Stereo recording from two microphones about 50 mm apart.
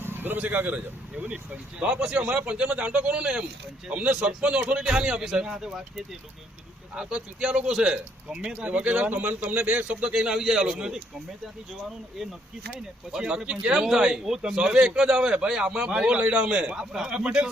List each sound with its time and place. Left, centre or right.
0.0 s a sound: right
0.3 s a man's voice: right; by 5.8 s centre
6.9 s a man's voice: centre
12.7 s speech: centre
13.2 s a man's voice: right